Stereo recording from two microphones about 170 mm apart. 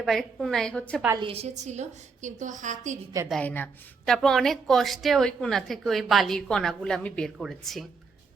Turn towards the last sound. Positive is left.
turn(degrees=0)  # may be behind; listen again after turning